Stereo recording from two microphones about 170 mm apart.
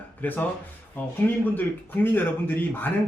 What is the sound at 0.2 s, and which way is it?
Speech, 10° left (ahead or behind).